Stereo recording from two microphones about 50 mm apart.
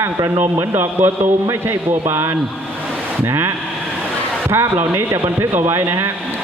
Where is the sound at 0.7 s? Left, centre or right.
Right.